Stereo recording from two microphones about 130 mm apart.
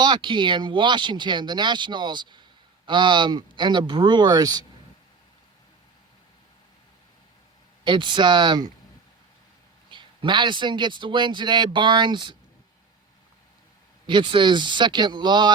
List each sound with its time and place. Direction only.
0.0 s speech: 35° right (ahead or behind)
7.9 s speech: 40° right (ahead or behind)
9.9 s speech: 40° right (ahead or behind)
14.1 s speech: 40° right (ahead or behind)